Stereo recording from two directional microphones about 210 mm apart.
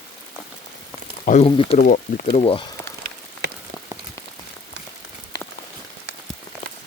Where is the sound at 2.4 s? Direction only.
25° left (ahead or behind).